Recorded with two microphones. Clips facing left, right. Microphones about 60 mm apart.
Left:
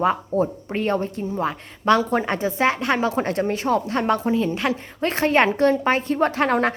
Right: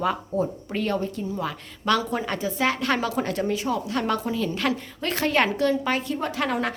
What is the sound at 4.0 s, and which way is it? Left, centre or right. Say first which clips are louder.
A woman's voice: left 5 dB; left.